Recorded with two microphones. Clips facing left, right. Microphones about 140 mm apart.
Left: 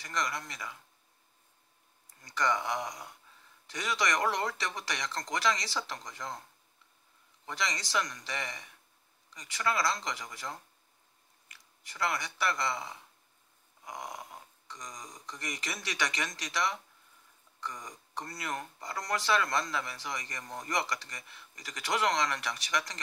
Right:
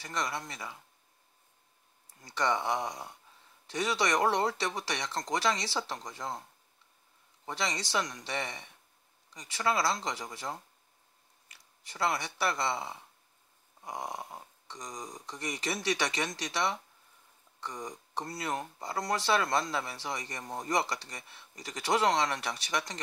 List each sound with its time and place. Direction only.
0.0 s speech: 30° right (ahead or behind)
2.3 s speech: 30° right (ahead or behind)
7.4 s speech: 30° right (ahead or behind)
11.5 s speech: 30° right (ahead or behind)